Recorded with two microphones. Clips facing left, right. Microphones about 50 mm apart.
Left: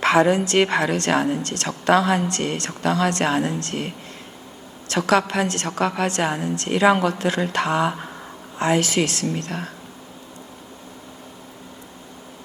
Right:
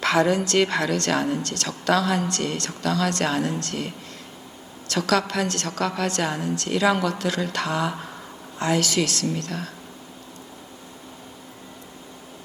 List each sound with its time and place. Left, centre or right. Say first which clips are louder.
0.0 s a woman's voice: left 3 dB; left